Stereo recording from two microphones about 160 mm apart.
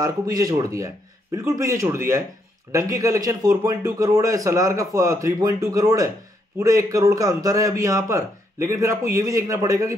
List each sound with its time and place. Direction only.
0.0 s a man's voice: 25° right (ahead or behind)